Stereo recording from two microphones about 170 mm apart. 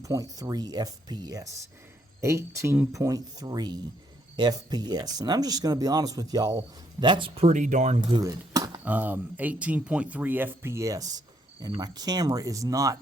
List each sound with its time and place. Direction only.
0.0 s speech: 20° right (ahead or behind); by 8.0 s 45° right (ahead or behind)
8.1 s speech: 20° right (ahead or behind)
8.8 s speech: 10° right (ahead or behind)